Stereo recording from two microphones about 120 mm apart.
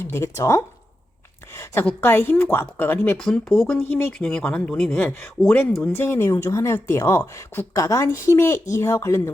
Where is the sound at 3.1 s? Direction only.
5° left (ahead or behind).